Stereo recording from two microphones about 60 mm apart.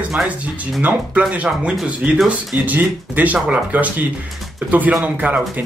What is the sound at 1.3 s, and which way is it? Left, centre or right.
Speech, right.